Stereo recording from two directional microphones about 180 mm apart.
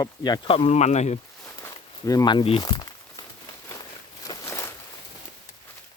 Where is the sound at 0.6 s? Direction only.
40° left (ahead or behind).